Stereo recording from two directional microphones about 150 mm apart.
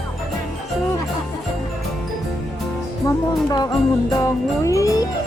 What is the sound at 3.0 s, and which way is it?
Music, 20° left (ahead or behind).